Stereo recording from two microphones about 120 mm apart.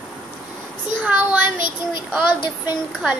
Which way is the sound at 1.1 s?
15° right (ahead or behind).